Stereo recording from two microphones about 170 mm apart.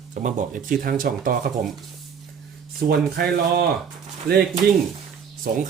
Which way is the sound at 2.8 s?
65° right (ahead or behind).